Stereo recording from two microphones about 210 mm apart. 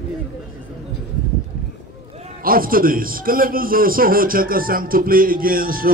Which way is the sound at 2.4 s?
45° right (ahead or behind).